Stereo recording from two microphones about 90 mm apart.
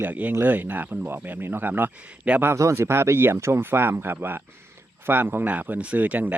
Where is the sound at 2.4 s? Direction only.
30° right (ahead or behind).